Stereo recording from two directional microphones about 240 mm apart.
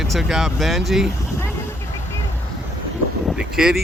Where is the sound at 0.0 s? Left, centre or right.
Centre.